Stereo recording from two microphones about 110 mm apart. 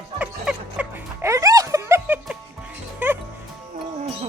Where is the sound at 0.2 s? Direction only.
10° right (ahead or behind).